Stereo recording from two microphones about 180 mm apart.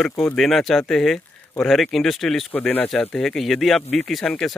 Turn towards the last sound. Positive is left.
turn(degrees=5)  # may be behind; listen again after turning